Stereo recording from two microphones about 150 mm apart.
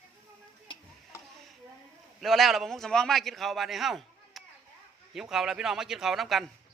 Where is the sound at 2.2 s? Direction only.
Centre (ahead or behind).